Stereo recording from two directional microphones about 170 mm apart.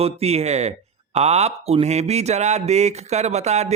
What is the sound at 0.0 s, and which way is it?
Mantra, 35° right (ahead or behind).